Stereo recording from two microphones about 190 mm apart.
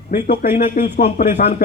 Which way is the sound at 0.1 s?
40° left (ahead or behind).